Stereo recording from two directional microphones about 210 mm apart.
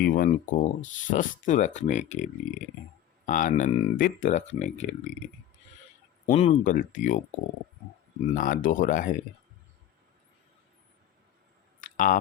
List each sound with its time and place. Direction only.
0.0 s speech: 40° left (ahead or behind)
6.2 s speech: 35° left (ahead or behind)
8.4 s speech: 40° left (ahead or behind)
11.8 s a sound: 40° left (ahead or behind)